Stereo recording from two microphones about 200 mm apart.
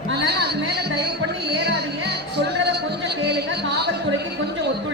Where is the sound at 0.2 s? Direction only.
55° right (ahead or behind).